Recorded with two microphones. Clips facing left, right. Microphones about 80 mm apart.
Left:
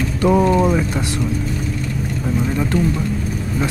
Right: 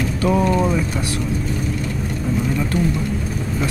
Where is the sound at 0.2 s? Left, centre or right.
Left.